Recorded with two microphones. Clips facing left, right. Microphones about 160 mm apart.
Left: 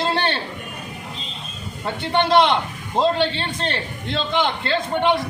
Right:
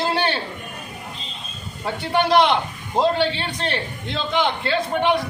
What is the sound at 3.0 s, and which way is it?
A man's voice, 5° right (ahead or behind).